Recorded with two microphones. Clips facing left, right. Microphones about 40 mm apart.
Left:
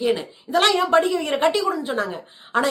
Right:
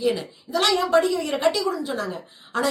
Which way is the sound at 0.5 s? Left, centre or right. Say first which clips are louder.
Left 2 dB; left.